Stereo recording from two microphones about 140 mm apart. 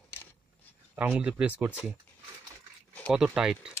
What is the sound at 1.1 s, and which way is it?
Speech, 10° right (ahead or behind).